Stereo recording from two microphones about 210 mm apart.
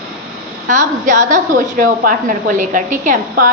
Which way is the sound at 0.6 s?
35° right (ahead or behind).